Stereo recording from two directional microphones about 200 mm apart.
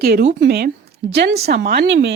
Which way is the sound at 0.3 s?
55° right (ahead or behind).